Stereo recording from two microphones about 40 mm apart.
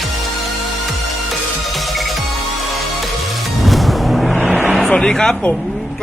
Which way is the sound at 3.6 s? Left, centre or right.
Centre.